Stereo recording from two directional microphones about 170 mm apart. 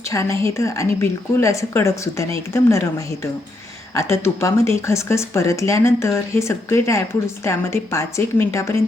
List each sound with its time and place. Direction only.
0.1 s speech: 15° left (ahead or behind)
3.9 s speech: 15° left (ahead or behind)